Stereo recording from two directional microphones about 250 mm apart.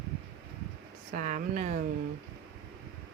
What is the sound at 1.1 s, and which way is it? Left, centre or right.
Speech, right.